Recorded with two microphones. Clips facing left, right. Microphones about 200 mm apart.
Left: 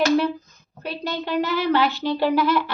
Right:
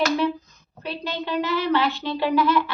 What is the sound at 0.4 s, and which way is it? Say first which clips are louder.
A woman's voice: left 1 dB; 45° left (ahead or behind).